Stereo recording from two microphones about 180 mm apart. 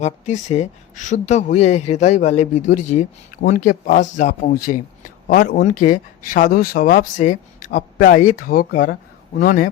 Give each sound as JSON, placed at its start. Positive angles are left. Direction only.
{"t": 0.0, "sound": "speech", "side_deg": 40}